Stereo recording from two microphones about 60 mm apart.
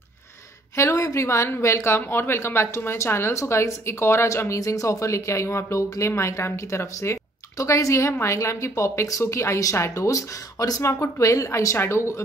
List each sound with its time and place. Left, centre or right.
0.7 s a woman's voice: left
10.0 s speech: left
10.9 s a woman's voice: left